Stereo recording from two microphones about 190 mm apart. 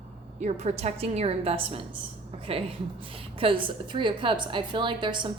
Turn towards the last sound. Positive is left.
turn(degrees=-25)  # may be behind; listen again after turning